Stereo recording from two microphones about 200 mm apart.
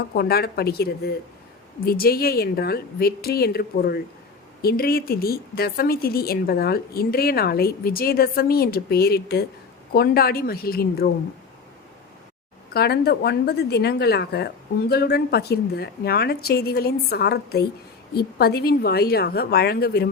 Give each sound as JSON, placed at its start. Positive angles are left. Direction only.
{"t": 0.1, "sound": "speech", "side_deg": 50}
{"t": 12.7, "sound": "speech", "side_deg": 55}